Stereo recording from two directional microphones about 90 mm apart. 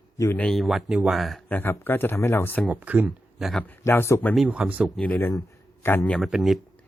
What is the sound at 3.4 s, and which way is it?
Speech, centre (ahead or behind).